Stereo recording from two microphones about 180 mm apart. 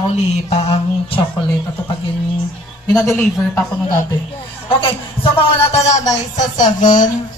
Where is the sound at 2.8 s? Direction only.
20° left (ahead or behind).